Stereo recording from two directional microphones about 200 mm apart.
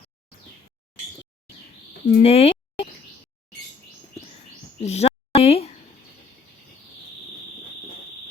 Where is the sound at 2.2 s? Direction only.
30° left (ahead or behind).